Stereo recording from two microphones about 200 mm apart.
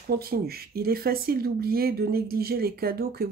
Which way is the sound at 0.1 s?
50° right (ahead or behind).